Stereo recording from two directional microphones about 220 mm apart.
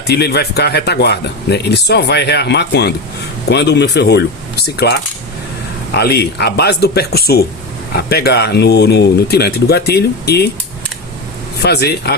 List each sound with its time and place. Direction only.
0.1 s speech: 45° left (ahead or behind)
11.6 s speech: 45° left (ahead or behind)